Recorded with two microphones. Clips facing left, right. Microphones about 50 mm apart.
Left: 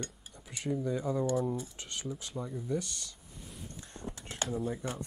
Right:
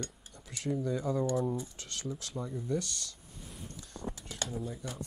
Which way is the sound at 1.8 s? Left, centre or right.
Centre.